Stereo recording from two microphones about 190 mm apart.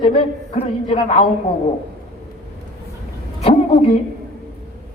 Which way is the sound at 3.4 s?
30° left (ahead or behind).